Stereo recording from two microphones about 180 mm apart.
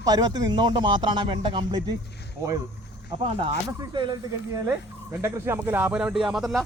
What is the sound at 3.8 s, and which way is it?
Speech, 25° right (ahead or behind).